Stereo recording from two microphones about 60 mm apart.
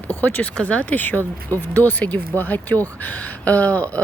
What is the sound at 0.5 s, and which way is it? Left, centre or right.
Speech, left.